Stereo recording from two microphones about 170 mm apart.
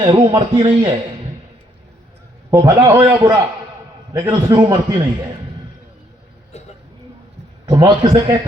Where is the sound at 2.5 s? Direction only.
15° right (ahead or behind).